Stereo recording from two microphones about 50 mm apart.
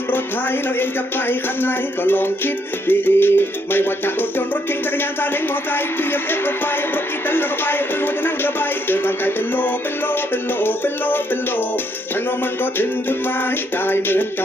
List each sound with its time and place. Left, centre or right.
1.6 s music: left
7.2 s music: left
8.9 s music: left
13.8 s music: left